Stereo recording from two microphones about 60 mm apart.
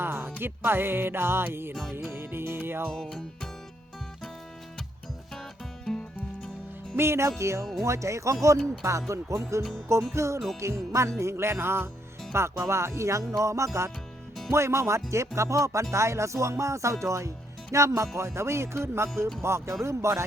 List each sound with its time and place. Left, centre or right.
0.0 s music: right
1.7 s music: centre
2.1 s speech: right
2.6 s music: right
2.9 s music: centre
5.3 s music: centre
6.9 s speech: right
7.8 s music: right
11.2 s speech: right
13.4 s music: right
14.5 s speech: right
15.1 s music: right
18.2 s speech: right